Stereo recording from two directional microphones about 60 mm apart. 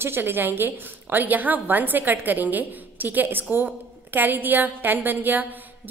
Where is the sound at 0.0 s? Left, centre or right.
Right.